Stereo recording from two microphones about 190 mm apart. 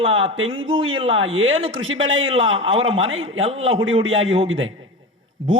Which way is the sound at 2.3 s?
30° right (ahead or behind).